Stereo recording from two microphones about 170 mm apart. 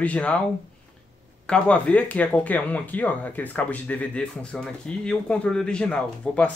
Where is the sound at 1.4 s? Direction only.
5° left (ahead or behind).